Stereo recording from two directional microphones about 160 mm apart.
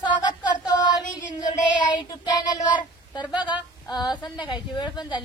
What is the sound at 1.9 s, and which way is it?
Child singing, 25° left (ahead or behind).